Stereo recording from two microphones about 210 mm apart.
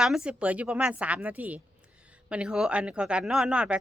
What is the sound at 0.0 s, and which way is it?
A woman's voice, 5° right (ahead or behind).